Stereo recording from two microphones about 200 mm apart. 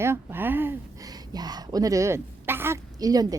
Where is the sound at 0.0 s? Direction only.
10° right (ahead or behind).